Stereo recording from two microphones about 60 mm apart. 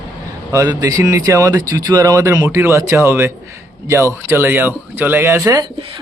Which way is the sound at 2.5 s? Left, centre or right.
Right.